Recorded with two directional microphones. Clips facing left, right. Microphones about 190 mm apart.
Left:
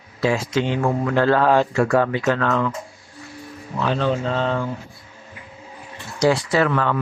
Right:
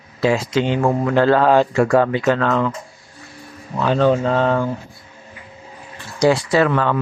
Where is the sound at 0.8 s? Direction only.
30° right (ahead or behind).